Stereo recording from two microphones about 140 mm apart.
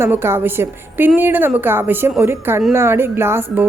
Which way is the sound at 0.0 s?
15° right (ahead or behind).